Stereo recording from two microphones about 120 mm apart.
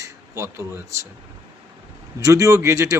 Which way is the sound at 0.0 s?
25° right (ahead or behind).